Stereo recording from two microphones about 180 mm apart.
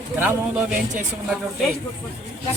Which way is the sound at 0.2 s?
10° right (ahead or behind).